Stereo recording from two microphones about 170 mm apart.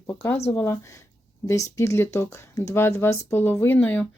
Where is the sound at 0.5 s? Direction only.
15° left (ahead or behind).